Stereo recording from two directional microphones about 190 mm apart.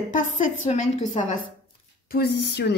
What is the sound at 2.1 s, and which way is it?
Speech, 60° left (ahead or behind).